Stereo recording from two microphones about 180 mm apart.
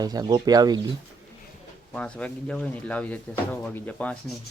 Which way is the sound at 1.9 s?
5° left (ahead or behind).